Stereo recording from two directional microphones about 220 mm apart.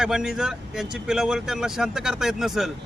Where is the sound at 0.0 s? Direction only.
5° right (ahead or behind).